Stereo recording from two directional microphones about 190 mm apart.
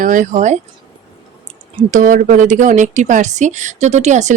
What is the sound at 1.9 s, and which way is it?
Speech, 45° right (ahead or behind).